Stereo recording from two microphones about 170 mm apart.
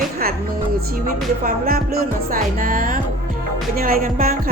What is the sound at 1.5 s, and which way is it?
Speech, 60° right (ahead or behind).